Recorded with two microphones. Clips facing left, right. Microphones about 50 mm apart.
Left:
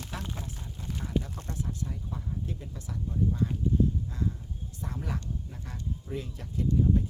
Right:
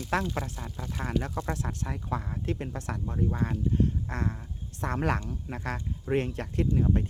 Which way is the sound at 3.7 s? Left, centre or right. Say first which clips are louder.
Left 1 dB; right.